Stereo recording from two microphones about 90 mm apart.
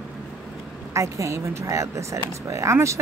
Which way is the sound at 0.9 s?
35° right (ahead or behind).